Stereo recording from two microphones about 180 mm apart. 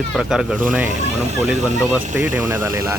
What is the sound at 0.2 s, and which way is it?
Speech, 5° right (ahead or behind).